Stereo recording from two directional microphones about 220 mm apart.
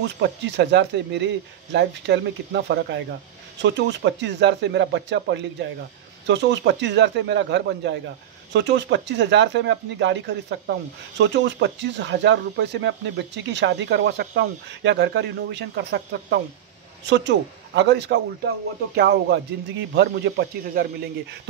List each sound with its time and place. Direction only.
0.2 s speech: 50° right (ahead or behind)